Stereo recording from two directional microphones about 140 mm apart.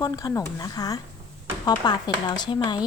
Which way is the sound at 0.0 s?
25° left (ahead or behind).